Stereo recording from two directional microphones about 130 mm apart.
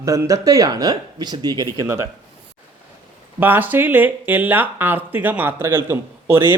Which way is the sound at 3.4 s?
15° right (ahead or behind).